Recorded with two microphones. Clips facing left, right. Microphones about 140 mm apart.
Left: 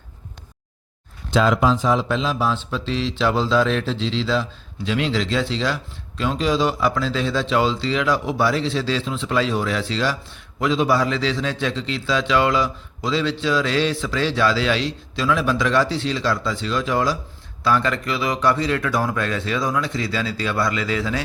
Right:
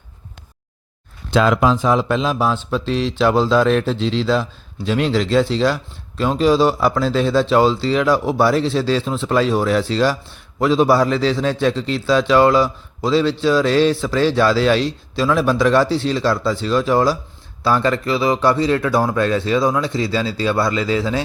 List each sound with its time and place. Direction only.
1.3 s a man's voice: 60° right (ahead or behind); by 21.2 s 30° right (ahead or behind)